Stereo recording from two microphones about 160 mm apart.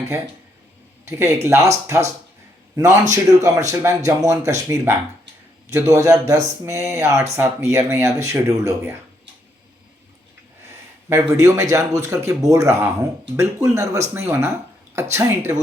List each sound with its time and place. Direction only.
1.0 s speech: 20° right (ahead or behind)
2.7 s speech: 20° right (ahead or behind)
11.1 s speech: 20° right (ahead or behind)